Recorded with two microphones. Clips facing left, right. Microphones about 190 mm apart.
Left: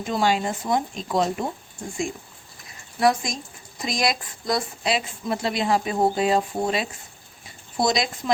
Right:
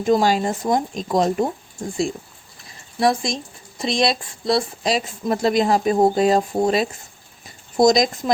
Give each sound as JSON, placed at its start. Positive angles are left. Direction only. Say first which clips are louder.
{"t": 0.1, "sound": "speech", "louder": "right 5 dB", "side_deg": -40}
{"t": 2.6, "sound": "speech", "louder": "right 1 dB", "side_deg": -30}